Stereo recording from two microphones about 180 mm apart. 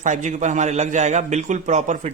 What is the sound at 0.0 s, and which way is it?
A man's voice, 40° right (ahead or behind).